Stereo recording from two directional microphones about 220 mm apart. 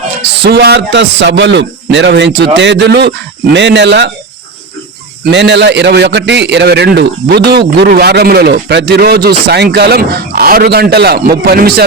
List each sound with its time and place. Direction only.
0.4 s a man's voice: 50° right (ahead or behind)
5.3 s a man's voice: 55° right (ahead or behind)